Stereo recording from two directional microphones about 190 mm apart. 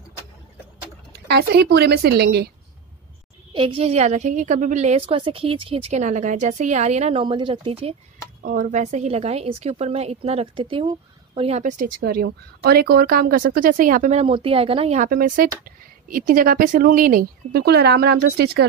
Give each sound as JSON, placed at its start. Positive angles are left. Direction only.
{"t": 1.2, "sound": "a woman's voice", "side_deg": -60}
{"t": 3.5, "sound": "a woman's voice", "side_deg": -30}
{"t": 8.5, "sound": "a woman's voice", "side_deg": -40}
{"t": 14.2, "sound": "speech", "side_deg": -30}
{"t": 15.0, "sound": "speech", "side_deg": -50}